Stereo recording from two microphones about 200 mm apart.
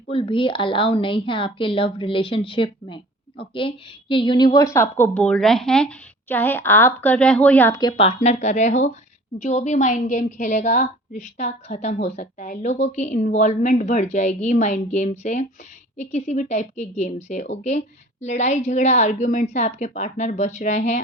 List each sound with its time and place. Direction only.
0.1 s a woman's voice: 25° left (ahead or behind); by 7.8 s 10° left (ahead or behind)
7.8 s a woman's voice: 25° left (ahead or behind)